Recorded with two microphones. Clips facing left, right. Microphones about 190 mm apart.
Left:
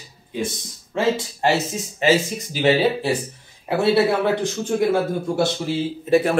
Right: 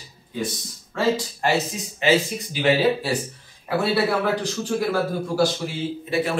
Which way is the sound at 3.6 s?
25° left (ahead or behind).